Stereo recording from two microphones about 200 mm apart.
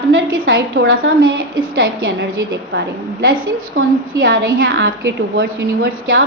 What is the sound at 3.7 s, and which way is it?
A woman's voice, 50° right (ahead or behind).